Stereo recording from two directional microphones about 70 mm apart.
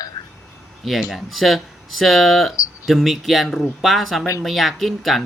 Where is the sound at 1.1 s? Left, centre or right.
Centre.